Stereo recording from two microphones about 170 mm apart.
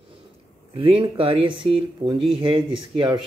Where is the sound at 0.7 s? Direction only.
30° right (ahead or behind).